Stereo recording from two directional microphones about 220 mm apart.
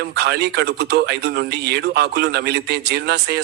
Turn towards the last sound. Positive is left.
turn(degrees=-50)  # may be behind; listen again after turning